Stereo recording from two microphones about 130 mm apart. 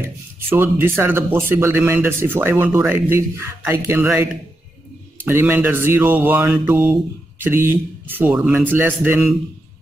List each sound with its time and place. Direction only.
0.6 s speech: 15° right (ahead or behind)